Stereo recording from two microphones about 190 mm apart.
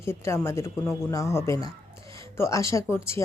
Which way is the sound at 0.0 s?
15° left (ahead or behind).